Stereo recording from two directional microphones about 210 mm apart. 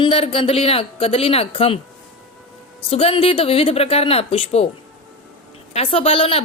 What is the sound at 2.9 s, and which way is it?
Speech, 25° left (ahead or behind).